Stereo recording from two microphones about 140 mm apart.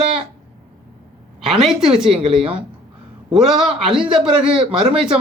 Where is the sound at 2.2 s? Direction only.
40° right (ahead or behind).